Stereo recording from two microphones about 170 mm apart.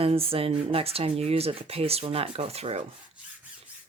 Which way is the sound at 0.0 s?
35° right (ahead or behind).